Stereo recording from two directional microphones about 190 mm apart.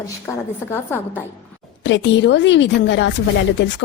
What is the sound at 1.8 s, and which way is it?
Speech, 70° left (ahead or behind).